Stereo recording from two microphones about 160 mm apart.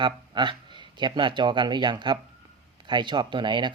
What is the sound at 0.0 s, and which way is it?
Speech, 30° right (ahead or behind).